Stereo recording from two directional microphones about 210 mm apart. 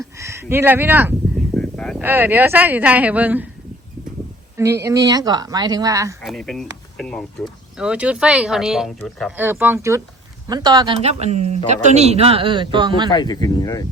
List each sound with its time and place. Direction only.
0.2 s speech: 15° right (ahead or behind)
1.5 s a sound: 5° left (ahead or behind)
2.0 s speech: 10° right (ahead or behind)
4.5 s speech: 15° right (ahead or behind)
6.2 s speech: centre (ahead or behind); by 13.1 s 20° right (ahead or behind)
13.1 s speech: 20° left (ahead or behind)